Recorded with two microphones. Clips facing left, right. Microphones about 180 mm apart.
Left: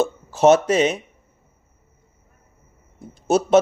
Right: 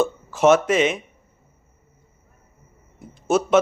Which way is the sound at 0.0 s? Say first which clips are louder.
Left 2 dB; 35° left (ahead or behind).